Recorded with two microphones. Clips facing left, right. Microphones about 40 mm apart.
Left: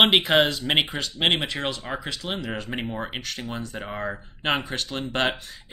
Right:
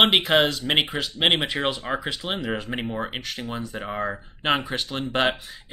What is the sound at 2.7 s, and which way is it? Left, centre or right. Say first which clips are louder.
Speech: right 2 dB; centre.